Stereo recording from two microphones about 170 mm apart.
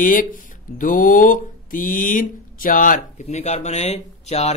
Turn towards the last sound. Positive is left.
turn(degrees=40)  # may be behind; listen again after turning